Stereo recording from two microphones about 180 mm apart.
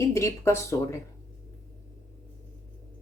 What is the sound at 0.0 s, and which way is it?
Speech, 15° left (ahead or behind).